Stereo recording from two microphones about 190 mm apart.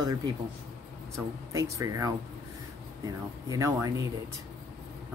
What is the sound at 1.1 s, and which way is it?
Speech, 15° right (ahead or behind).